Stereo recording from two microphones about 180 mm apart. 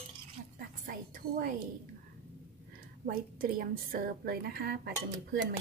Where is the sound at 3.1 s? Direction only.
55° right (ahead or behind).